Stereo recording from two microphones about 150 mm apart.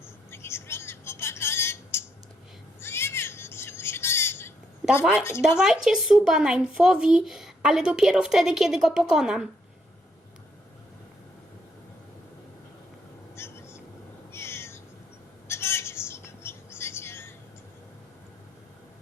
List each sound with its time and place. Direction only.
0.0 s a sound: 15° left (ahead or behind)
4.8 s a sound: centre (ahead or behind)
5.5 s speech: 5° right (ahead or behind)
13.3 s vehicle: 15° left (ahead or behind)
14.3 s cat: 15° left (ahead or behind)
15.4 s whispering: 15° left (ahead or behind)